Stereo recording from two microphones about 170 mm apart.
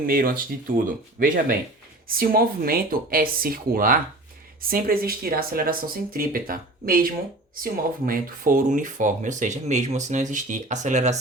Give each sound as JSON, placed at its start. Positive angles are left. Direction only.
{"t": 0.0, "sound": "speech", "side_deg": -55}